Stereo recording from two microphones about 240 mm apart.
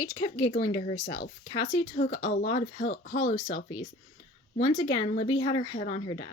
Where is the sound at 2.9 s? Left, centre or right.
Left.